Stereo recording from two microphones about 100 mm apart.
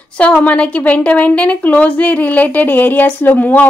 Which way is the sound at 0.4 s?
15° left (ahead or behind).